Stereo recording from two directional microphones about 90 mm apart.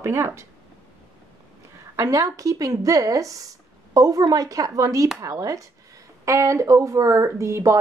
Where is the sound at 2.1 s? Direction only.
40° right (ahead or behind).